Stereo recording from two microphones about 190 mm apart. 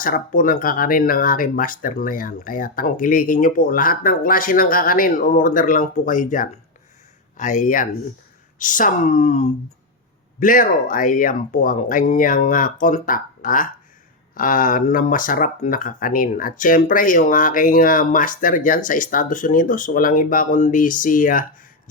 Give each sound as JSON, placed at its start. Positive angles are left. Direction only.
{"t": 0.0, "sound": "speech", "side_deg": 45}